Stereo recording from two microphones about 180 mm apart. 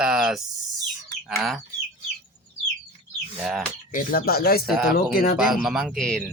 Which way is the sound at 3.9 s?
55° left (ahead or behind).